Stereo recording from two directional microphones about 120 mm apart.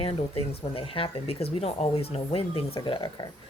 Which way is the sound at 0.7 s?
50° left (ahead or behind).